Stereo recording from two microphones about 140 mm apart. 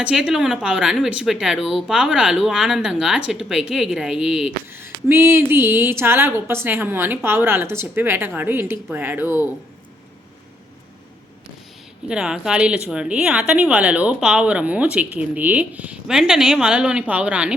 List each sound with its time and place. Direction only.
0.0 s a woman's voice: 5° right (ahead or behind)
12.0 s a woman's voice: 5° right (ahead or behind)